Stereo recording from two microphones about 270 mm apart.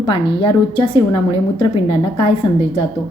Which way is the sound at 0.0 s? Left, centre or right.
Centre.